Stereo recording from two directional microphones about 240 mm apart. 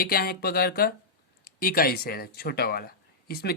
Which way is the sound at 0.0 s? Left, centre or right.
Left.